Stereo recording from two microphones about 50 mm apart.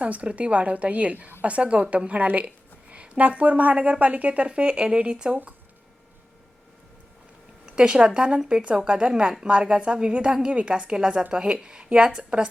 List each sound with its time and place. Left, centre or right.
0.0 s a woman's voice: right
7.6 s a woman's voice: centre